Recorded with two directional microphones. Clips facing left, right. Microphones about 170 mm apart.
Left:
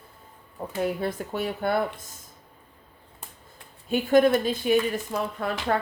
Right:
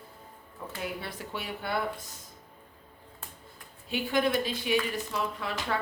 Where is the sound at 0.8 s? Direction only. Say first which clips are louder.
Left 10 dB; 45° left (ahead or behind).